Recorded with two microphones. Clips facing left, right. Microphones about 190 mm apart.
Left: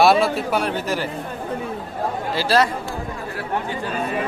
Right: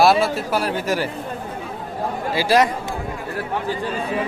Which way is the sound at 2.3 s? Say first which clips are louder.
Right 2 dB; 15° right (ahead or behind).